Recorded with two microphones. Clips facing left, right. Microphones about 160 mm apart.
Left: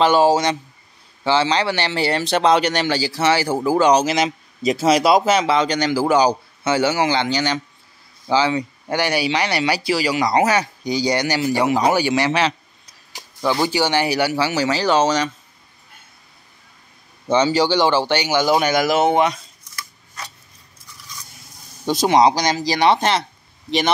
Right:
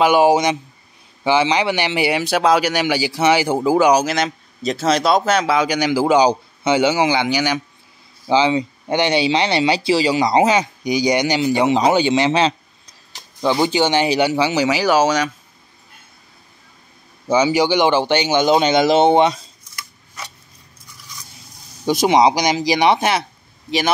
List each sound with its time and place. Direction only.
0.0 s speech: 15° right (ahead or behind)
4.0 s speech: 5° left (ahead or behind)
17.3 s speech: 10° right (ahead or behind); by 19.4 s 30° right (ahead or behind)
21.8 s speech: 15° right (ahead or behind)